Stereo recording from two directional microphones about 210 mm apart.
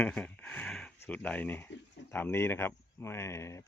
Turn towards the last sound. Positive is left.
turn(degrees=15)  # may be behind; listen again after turning